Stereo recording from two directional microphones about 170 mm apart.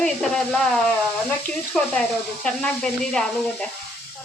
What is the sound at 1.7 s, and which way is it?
Speech, 5° left (ahead or behind).